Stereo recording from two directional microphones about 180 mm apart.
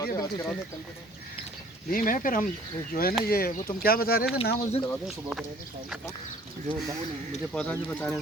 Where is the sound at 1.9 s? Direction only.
50° left (ahead or behind).